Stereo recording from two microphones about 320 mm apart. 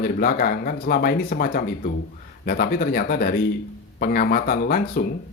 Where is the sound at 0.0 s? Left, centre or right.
Left.